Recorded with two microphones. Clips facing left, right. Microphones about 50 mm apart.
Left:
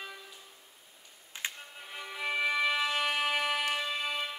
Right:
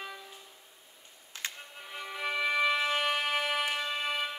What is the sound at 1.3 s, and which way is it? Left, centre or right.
Music, left.